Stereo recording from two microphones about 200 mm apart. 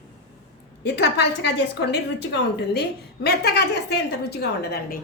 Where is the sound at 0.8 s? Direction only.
55° left (ahead or behind).